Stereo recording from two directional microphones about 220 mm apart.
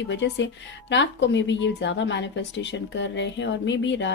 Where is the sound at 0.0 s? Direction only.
55° left (ahead or behind).